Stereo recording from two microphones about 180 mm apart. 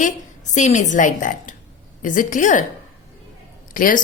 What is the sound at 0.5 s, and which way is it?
A woman's voice, 40° left (ahead or behind).